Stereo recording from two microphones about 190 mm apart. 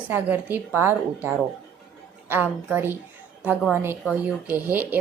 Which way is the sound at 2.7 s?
10° right (ahead or behind).